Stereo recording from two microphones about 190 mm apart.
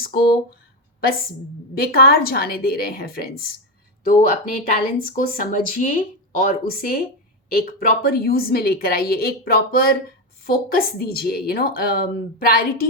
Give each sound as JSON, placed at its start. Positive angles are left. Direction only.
{"t": 1.7, "sound": "speech", "side_deg": 50}